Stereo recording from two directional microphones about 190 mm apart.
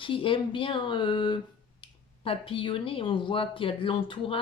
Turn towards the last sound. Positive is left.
turn(degrees=25)  # may be behind; listen again after turning